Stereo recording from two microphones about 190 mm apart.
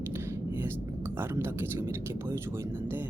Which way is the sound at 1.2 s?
10° right (ahead or behind).